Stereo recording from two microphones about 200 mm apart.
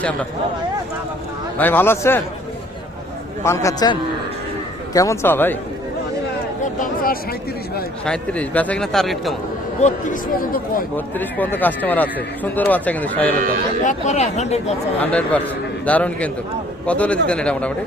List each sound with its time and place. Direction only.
1.5 s speech: 10° left (ahead or behind)
3.4 s speech: 15° left (ahead or behind)
4.9 s speech: 15° left (ahead or behind)
6.7 s a sound: 45° left (ahead or behind)
8.0 s speech: 5° left (ahead or behind)
9.8 s speech: 40° left (ahead or behind)
10.9 s speech: 10° left (ahead or behind)
13.8 s speech: 35° left (ahead or behind)
15.0 s speech: 5° left (ahead or behind)